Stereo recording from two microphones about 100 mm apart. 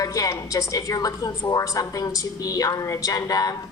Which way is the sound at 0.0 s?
35° left (ahead or behind).